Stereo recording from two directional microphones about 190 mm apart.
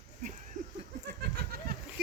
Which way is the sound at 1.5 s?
55° right (ahead or behind).